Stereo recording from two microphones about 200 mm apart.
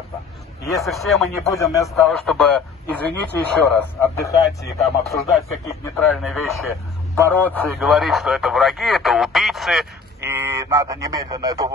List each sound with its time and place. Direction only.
0.8 s speech: centre (ahead or behind)
1.3 s speech: 15° left (ahead or behind)
1.7 s speech: centre (ahead or behind)
5.9 s speech: centre (ahead or behind)
10.2 s speech: 10° right (ahead or behind)